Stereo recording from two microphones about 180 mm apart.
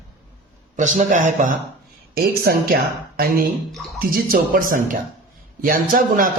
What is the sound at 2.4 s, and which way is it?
A woman's voice, 55° right (ahead or behind).